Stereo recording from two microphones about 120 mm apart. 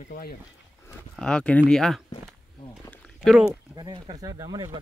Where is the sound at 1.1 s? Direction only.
5° left (ahead or behind).